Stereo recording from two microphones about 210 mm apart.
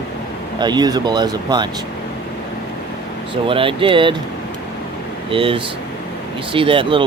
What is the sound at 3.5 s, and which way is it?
Speech, 25° right (ahead or behind).